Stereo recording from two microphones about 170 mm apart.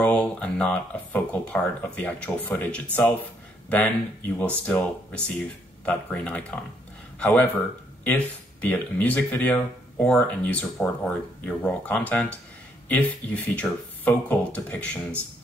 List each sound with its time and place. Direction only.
0.0 s speech: 10° left (ahead or behind)
8.6 s speech: 10° left (ahead or behind)